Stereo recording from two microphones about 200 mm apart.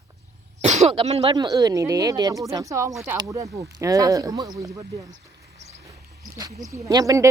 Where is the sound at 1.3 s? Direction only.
20° right (ahead or behind).